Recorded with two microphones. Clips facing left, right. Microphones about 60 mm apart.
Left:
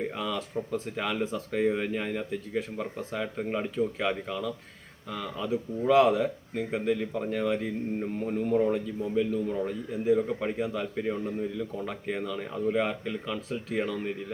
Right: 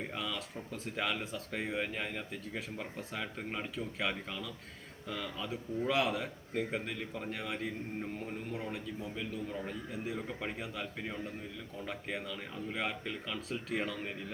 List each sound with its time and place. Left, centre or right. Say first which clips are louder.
0.0 s speech: left 7 dB; centre
8.2 s speech: left 14 dB; centre
10.2 s speech: left 11 dB; centre